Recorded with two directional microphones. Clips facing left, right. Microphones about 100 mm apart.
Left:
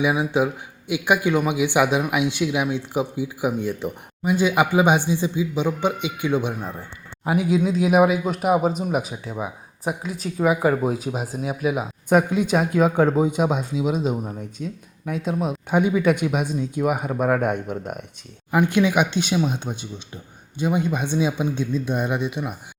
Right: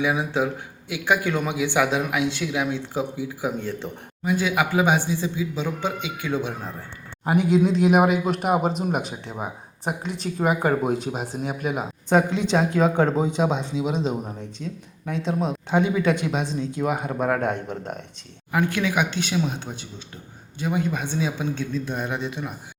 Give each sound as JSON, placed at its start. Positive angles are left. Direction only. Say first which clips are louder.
{"t": 0.0, "sound": "speech", "louder": "left 3 dB", "side_deg": 15}
{"t": 7.3, "sound": "speech", "louder": "right 1 dB", "side_deg": 5}